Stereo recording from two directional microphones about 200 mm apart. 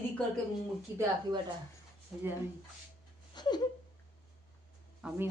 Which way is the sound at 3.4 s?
20° left (ahead or behind).